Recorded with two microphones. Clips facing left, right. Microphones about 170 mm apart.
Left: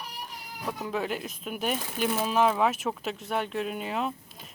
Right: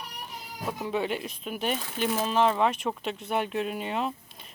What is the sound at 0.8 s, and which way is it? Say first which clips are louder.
Speech: right 2 dB; 5° right (ahead or behind).